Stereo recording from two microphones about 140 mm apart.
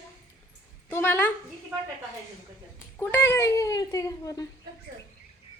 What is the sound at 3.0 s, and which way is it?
Speech, 15° left (ahead or behind).